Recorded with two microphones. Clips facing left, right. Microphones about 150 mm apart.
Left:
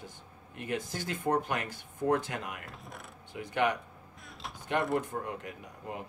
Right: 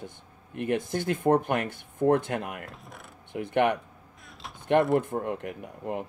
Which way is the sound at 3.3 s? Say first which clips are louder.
Right 6 dB; 55° right (ahead or behind).